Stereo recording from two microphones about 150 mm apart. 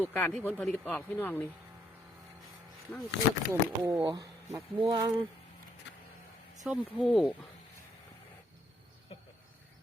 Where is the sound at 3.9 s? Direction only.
25° right (ahead or behind).